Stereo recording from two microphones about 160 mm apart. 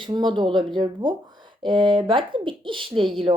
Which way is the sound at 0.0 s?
30° right (ahead or behind).